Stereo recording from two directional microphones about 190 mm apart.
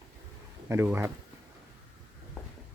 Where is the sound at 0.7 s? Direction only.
10° right (ahead or behind).